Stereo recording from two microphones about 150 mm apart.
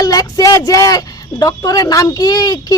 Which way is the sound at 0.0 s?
25° left (ahead or behind).